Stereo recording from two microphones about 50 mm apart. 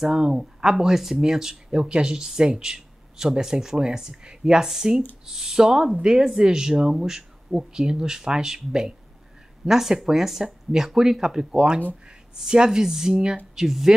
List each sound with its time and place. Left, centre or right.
0.0 s speech: centre